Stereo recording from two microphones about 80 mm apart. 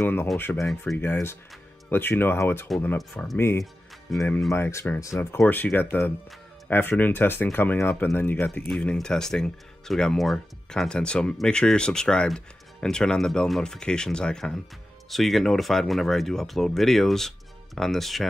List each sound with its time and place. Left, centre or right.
0.0 s speech: left
0.5 s speech: centre; by 5.4 s left
5.5 s speech: left
8.6 s speech: centre